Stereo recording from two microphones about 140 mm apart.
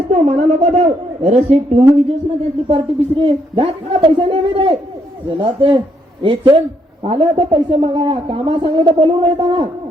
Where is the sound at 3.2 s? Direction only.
35° right (ahead or behind).